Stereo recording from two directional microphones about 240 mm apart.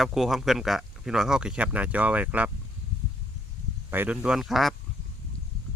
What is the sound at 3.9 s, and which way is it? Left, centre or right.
Speech, centre.